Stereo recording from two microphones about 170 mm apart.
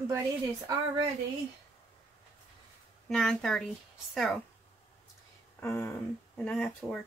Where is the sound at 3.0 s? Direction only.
5° left (ahead or behind).